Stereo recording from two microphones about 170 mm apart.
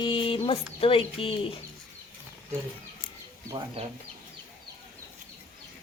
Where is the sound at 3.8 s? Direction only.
35° right (ahead or behind).